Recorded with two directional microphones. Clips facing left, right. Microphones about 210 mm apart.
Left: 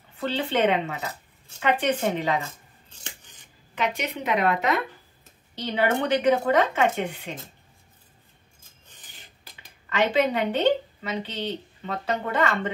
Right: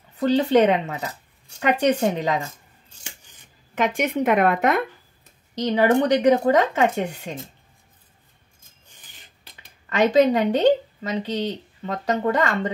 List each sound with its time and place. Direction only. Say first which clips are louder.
0.2 s speech: right 7 dB; 40° right (ahead or behind)
2.9 s scissors: left 1 dB; 10° right (ahead or behind)
3.7 s speech: right 6 dB; 50° right (ahead or behind)
5.6 s speech: right 6 dB; 35° right (ahead or behind)
9.8 s speech: right 6 dB; 40° right (ahead or behind)